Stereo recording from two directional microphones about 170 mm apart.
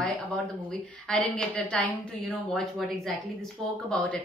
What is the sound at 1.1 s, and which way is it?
A woman's voice, 5° left (ahead or behind).